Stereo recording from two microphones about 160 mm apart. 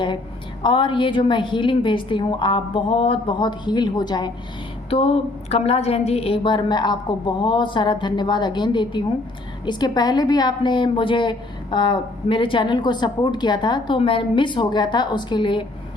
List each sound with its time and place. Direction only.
0.6 s a woman's voice: 30° left (ahead or behind)
4.9 s a woman's voice: 40° left (ahead or behind)